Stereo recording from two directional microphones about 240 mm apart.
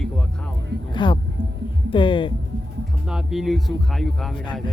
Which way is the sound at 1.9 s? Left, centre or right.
Left.